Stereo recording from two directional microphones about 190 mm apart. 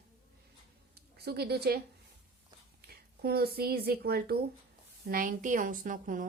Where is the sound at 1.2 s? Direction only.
60° right (ahead or behind).